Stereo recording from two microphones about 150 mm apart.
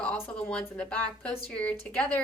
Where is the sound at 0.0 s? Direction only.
5° left (ahead or behind).